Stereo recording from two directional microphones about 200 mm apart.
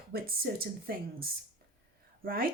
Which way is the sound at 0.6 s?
50° right (ahead or behind).